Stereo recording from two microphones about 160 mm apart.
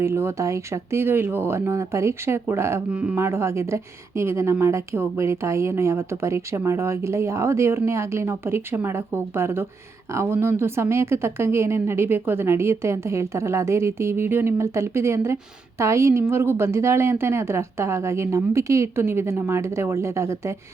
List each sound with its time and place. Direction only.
0.0 s speech: 15° right (ahead or behind)